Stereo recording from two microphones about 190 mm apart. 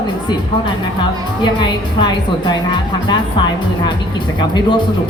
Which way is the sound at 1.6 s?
25° left (ahead or behind).